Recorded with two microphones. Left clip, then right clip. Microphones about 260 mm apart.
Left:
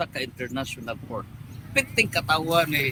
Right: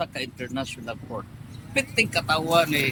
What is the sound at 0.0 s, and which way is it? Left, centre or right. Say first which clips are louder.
Speech: left 1 dB; centre.